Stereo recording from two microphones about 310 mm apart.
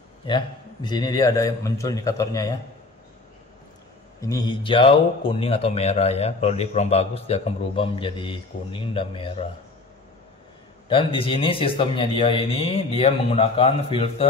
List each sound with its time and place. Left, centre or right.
0.8 s speech: centre
4.2 s speech: centre
10.9 s speech: centre